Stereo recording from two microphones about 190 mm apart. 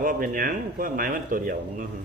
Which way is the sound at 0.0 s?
45° right (ahead or behind).